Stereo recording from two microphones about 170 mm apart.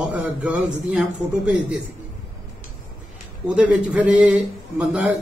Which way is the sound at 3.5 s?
10° right (ahead or behind).